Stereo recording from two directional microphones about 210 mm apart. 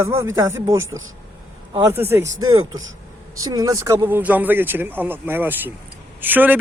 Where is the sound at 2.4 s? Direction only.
75° right (ahead or behind).